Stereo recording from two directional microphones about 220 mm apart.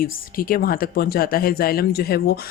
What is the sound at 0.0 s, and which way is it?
Speech, 40° left (ahead or behind).